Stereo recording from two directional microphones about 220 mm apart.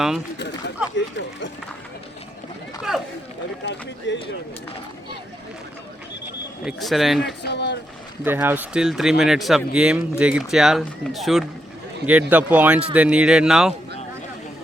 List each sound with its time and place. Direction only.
0.9 s speech: 55° left (ahead or behind)
3.6 s speech: 55° left (ahead or behind)
6.7 s speech: centre (ahead or behind)
7.4 s speech: 50° left (ahead or behind)
8.2 s speech: 10° right (ahead or behind)